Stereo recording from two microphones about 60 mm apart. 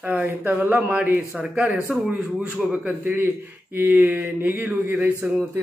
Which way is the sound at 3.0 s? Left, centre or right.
Right.